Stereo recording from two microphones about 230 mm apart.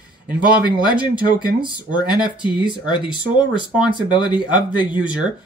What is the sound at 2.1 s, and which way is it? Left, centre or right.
Speech, centre.